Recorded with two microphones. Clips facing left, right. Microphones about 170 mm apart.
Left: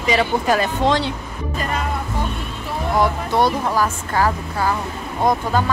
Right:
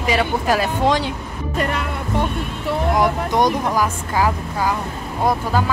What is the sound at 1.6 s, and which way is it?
Speech, 65° right (ahead or behind).